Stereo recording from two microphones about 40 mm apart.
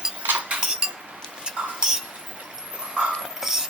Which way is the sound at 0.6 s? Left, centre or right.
Centre.